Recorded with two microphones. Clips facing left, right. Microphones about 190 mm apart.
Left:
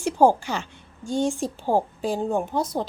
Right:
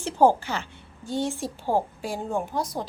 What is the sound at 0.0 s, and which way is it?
A woman's voice, 10° left (ahead or behind).